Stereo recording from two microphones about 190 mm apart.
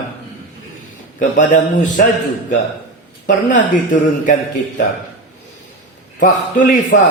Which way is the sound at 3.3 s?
40° left (ahead or behind).